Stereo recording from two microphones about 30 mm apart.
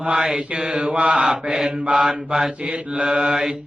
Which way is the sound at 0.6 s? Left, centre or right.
Centre.